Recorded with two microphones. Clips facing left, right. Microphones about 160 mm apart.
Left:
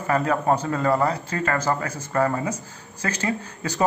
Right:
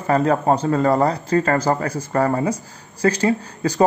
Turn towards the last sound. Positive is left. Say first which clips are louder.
# right 7 dB
turn(degrees=-35)  # may be behind; listen again after turning